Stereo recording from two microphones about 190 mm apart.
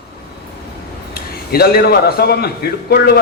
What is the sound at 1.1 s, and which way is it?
A man's voice, 55° left (ahead or behind).